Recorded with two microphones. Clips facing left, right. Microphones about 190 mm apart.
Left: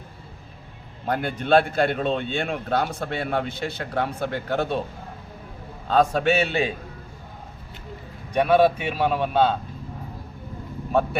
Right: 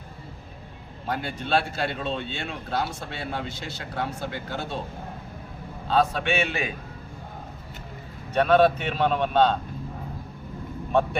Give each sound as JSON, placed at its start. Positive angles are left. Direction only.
{"t": 1.0, "sound": "a man's voice", "side_deg": 50}
{"t": 5.9, "sound": "a man's voice", "side_deg": 45}
{"t": 8.3, "sound": "a man's voice", "side_deg": 10}